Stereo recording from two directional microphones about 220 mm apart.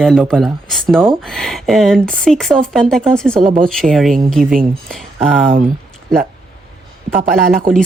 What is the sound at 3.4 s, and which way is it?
Speech, 35° right (ahead or behind).